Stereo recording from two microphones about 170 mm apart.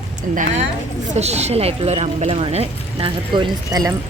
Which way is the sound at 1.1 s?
40° right (ahead or behind).